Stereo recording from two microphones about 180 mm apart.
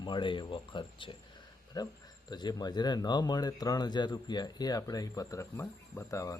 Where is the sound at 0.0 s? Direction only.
25° left (ahead or behind).